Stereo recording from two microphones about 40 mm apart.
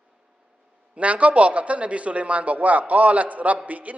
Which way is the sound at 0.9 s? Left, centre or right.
Right.